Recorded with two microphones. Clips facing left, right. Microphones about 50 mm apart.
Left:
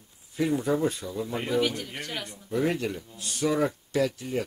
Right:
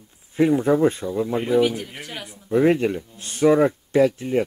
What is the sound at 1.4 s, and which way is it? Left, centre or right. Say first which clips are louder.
Speech: right 6 dB; centre.